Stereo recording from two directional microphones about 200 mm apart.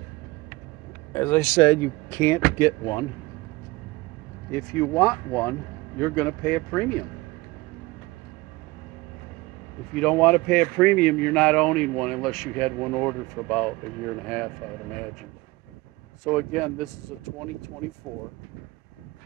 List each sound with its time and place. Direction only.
1.1 s speech: 10° left (ahead or behind)
4.5 s speech: 10° left (ahead or behind)
9.9 s a man's voice: 5° left (ahead or behind)
16.3 s a man's voice: centre (ahead or behind)